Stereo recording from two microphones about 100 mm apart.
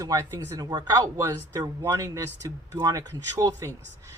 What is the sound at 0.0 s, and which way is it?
Speech, 30° right (ahead or behind).